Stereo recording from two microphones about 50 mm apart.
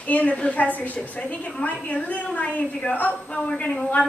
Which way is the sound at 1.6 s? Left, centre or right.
Left.